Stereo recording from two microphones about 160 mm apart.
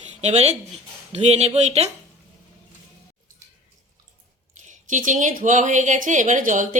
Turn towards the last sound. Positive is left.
turn(degrees=-55)  # may be behind; listen again after turning